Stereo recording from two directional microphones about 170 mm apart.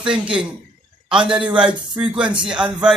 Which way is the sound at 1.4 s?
30° right (ahead or behind).